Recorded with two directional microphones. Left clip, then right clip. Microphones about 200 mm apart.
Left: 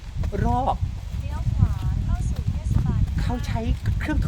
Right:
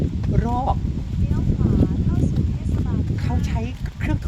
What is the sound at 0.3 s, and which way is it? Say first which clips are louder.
Speech: even; 15° left (ahead or behind).